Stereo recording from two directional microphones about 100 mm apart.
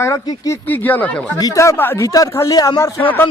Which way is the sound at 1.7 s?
20° left (ahead or behind).